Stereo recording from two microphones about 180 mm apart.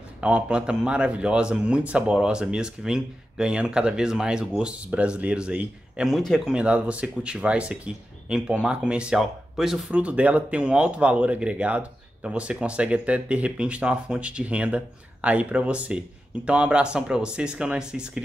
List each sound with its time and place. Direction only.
0.2 s a man's voice: 5° right (ahead or behind)